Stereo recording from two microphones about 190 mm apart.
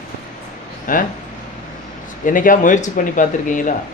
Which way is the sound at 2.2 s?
45° left (ahead or behind).